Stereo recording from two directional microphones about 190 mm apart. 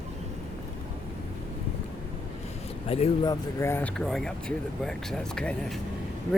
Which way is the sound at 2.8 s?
30° left (ahead or behind).